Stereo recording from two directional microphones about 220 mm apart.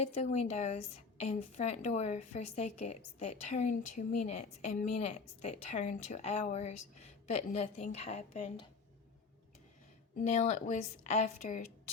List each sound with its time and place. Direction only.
0.0 s a woman's voice: 30° left (ahead or behind)
10.2 s a woman's voice: 30° left (ahead or behind)